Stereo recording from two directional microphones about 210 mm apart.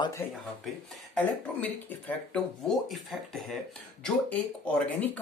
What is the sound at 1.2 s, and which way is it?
Speech, 5° left (ahead or behind).